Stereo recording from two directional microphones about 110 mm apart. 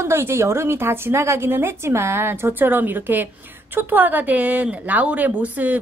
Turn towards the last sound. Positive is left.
turn(degrees=-15)  # may be behind; listen again after turning